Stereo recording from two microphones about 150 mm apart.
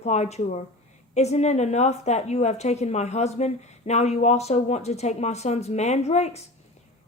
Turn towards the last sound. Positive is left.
turn(degrees=45)  # may be behind; listen again after turning